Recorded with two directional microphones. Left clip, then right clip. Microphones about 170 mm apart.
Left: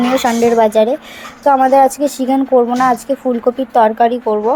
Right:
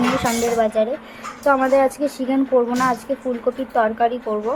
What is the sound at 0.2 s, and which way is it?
Speech, 25° left (ahead or behind).